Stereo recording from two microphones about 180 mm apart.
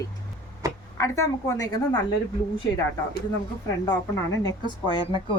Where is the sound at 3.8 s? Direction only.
20° left (ahead or behind).